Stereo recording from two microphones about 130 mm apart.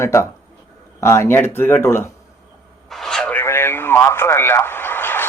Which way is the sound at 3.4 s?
20° left (ahead or behind).